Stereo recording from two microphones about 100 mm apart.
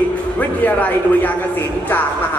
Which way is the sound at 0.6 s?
20° left (ahead or behind).